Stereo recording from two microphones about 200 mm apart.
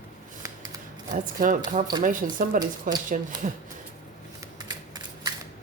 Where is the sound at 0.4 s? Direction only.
20° right (ahead or behind).